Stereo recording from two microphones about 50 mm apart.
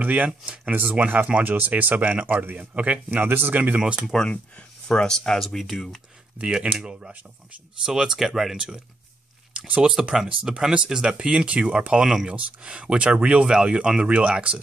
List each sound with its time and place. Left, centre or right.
0.0 s speech: right
0.9 s speech: right
4.1 s speech: centre
5.4 s speech: centre
6.3 s speech: centre
11.9 s speech: centre
12.3 s speech: right